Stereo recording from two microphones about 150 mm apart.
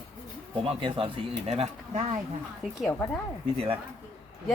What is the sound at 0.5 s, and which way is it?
Speech, 35° right (ahead or behind).